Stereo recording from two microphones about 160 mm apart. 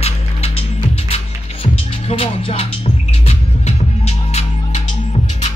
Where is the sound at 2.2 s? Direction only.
35° left (ahead or behind).